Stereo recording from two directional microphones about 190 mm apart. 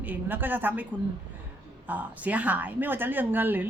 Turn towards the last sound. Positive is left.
turn(degrees=-10)  # may be behind; listen again after turning